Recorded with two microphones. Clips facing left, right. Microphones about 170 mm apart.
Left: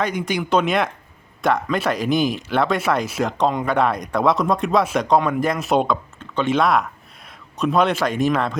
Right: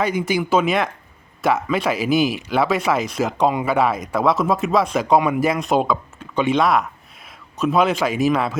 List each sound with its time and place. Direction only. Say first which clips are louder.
0.0 s speech: right 2 dB; 5° right (ahead or behind)
7.3 s a sound: right 1 dB; centre (ahead or behind)
7.9 s speech: right 1 dB; 5° right (ahead or behind)